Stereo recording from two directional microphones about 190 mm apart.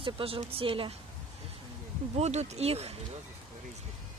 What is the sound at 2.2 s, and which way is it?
Speech, 35° right (ahead or behind).